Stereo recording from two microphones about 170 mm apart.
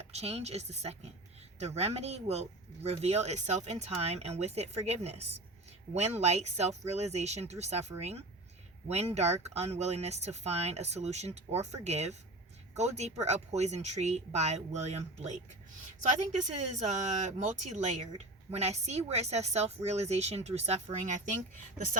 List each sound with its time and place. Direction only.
0.1 s speech: 40° right (ahead or behind)